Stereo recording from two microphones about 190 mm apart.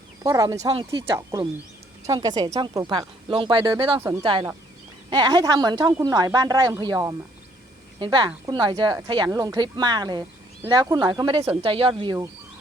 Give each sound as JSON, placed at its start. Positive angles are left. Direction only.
{"t": 0.2, "sound": "a woman's voice", "side_deg": -20}